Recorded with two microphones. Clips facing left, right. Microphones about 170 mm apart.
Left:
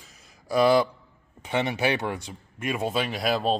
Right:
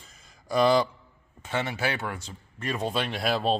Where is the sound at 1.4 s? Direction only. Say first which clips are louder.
Left 4 dB; 20° left (ahead or behind); by 3.6 s centre (ahead or behind).